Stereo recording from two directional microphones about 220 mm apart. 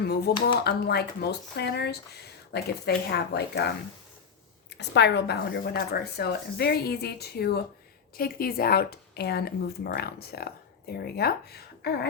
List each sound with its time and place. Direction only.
0.3 s speech: 45° left (ahead or behind)
4.8 s speech: 50° left (ahead or behind)